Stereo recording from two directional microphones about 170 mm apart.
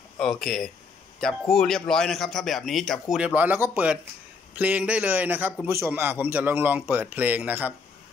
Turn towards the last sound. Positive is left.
turn(degrees=-10)  # may be behind; listen again after turning